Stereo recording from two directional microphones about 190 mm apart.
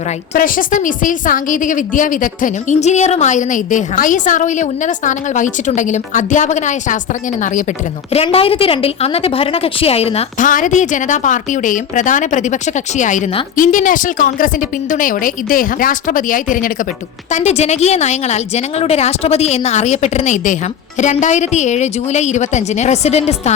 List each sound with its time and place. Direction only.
0.3 s a woman's voice: 45° left (ahead or behind)
8.1 s a woman's voice: 30° left (ahead or behind)